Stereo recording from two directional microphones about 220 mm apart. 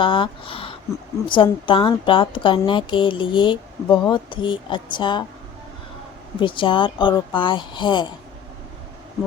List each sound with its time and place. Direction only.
0.0 s speech: 20° left (ahead or behind)
6.4 s speech: 20° left (ahead or behind)